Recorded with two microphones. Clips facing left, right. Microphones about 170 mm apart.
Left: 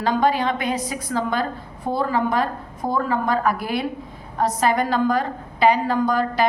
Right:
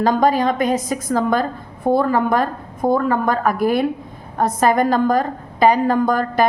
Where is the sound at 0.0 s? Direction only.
45° right (ahead or behind).